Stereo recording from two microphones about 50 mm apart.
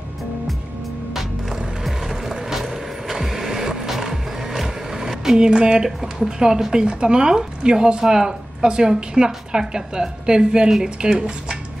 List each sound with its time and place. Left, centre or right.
1.9 s music: centre
3.1 s vehicle: centre
4.6 s speech: centre